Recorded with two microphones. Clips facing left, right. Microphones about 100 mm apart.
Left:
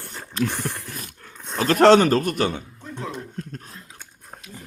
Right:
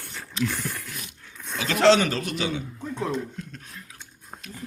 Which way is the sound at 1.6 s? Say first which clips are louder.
Left 5 dB; 45° left (ahead or behind).